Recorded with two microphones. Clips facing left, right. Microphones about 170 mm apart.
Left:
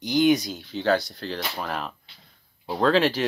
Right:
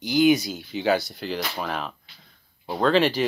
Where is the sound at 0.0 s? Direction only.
5° right (ahead or behind).